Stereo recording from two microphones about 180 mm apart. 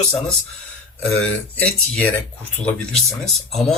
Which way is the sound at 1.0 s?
5° left (ahead or behind).